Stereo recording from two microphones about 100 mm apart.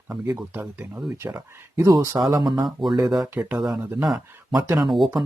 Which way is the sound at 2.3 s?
45° right (ahead or behind).